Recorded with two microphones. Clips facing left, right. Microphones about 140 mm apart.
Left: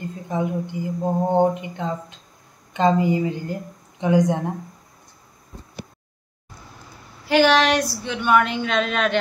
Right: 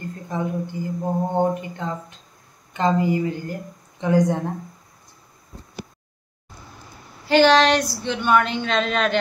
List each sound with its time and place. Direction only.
0.3 s a woman's voice: 15° left (ahead or behind)
7.2 s a woman's voice: 5° left (ahead or behind)